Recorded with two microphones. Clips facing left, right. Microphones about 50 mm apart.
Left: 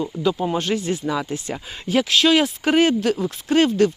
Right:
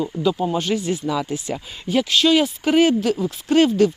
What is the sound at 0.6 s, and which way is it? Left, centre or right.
Speech, left.